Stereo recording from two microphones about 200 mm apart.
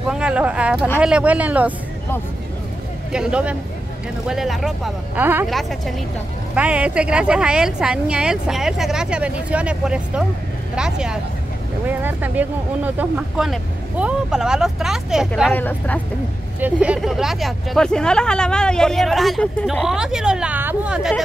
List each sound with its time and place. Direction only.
0.1 s speech: 5° right (ahead or behind)
3.1 s speech: 5° right (ahead or behind)
5.5 s speech: centre (ahead or behind)
15.5 s speech: 10° left (ahead or behind)
16.5 s speech: 5° right (ahead or behind)